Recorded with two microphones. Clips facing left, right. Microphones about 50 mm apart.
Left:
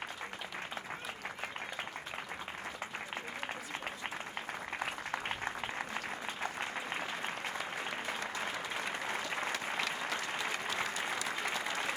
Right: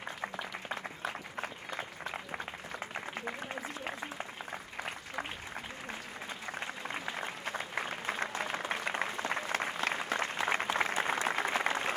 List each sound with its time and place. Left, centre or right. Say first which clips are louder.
7.6 s applause: right 2 dB; right